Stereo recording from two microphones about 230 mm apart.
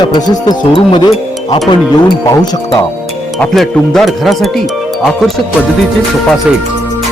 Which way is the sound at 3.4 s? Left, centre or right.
Centre.